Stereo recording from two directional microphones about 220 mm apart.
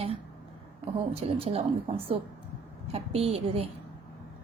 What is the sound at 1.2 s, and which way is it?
Speech, 25° right (ahead or behind).